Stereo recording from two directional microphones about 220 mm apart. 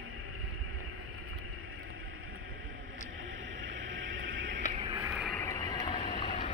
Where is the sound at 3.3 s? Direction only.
60° right (ahead or behind).